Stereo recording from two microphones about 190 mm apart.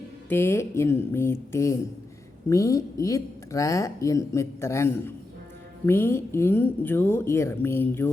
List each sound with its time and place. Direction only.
0.3 s speech: 15° left (ahead or behind)